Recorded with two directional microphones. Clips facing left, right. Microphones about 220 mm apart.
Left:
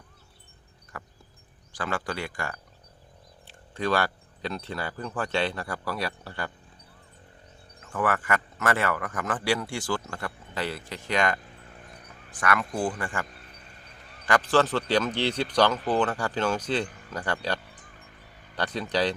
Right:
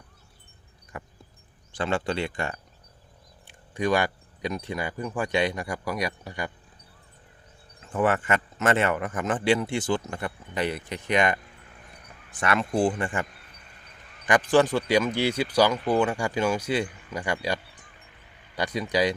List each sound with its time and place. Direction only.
0.9 s a sound: 20° right (ahead or behind)
1.7 s speech: 25° right (ahead or behind)
7.8 s speech: 25° right (ahead or behind)
14.3 s speech: 15° right (ahead or behind)